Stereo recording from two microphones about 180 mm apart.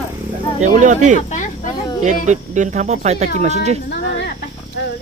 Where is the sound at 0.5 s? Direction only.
45° right (ahead or behind).